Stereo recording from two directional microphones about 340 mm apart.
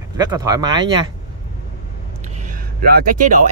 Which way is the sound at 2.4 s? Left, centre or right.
Right.